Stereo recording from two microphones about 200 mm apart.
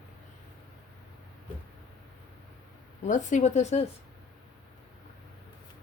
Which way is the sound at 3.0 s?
40° left (ahead or behind).